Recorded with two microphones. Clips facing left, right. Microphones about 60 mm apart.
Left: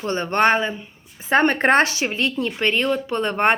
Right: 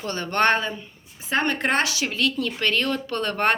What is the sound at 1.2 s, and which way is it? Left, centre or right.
Speech, left.